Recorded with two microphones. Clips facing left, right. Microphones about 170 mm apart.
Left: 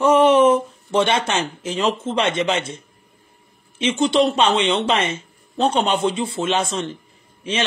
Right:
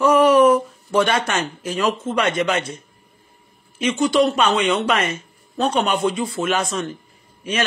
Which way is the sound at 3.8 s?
25° left (ahead or behind).